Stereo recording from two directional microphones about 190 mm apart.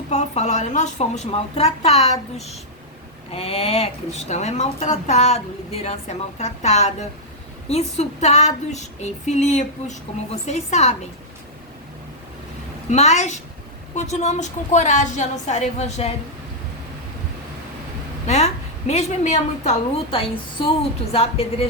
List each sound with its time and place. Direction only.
0.1 s speech: 35° left (ahead or behind)
12.9 s speech: 35° left (ahead or behind)
18.3 s speech: 35° left (ahead or behind)